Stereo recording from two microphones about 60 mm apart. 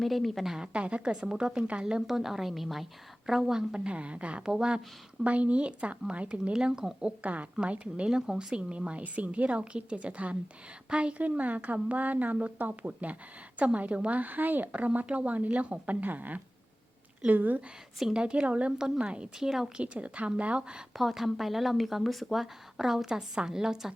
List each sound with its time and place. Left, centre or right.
0.0 s a woman's voice: centre
3.8 s a woman's voice: centre
18.0 s a woman's voice: centre
19.4 s a woman's voice: centre
19.8 s a woman's voice: right
20.9 s speech: centre